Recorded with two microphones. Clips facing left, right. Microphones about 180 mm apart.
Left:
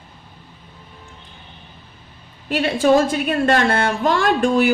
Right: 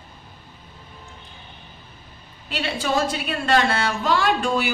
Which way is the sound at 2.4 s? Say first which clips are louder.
Left 9 dB; 50° left (ahead or behind).